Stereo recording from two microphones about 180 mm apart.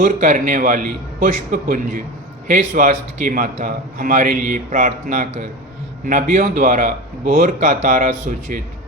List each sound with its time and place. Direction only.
0.0 s a man's voice: 45° right (ahead or behind)